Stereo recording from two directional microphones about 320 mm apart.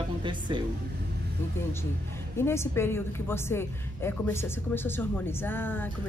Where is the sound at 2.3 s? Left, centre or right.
Centre.